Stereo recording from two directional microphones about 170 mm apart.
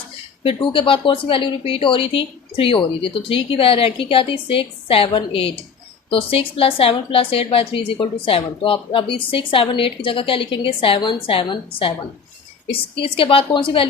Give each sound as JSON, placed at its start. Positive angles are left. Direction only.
{"t": 0.4, "sound": "a woman's voice", "side_deg": 30}